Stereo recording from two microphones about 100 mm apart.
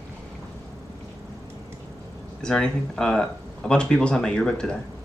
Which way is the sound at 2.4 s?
5° left (ahead or behind).